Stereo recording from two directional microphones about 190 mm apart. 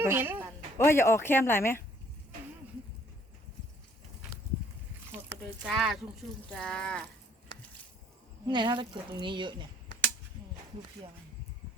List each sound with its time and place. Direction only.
0.0 s a man's voice: 10° right (ahead or behind)
0.8 s speech: 15° left (ahead or behind)
5.6 s speech: centre (ahead or behind)
8.4 s speech: 25° right (ahead or behind)